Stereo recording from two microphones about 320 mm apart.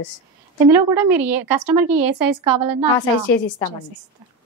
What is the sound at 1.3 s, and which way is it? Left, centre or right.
A woman's voice, right.